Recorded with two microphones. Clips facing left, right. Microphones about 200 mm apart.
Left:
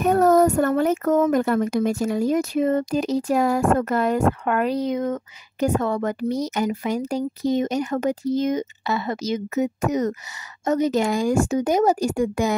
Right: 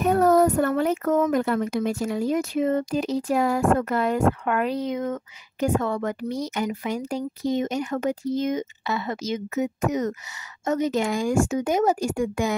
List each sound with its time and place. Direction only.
0.1 s a child's voice: 45° left (ahead or behind)